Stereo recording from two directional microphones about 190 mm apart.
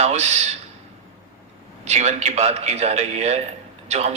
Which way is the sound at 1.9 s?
35° right (ahead or behind).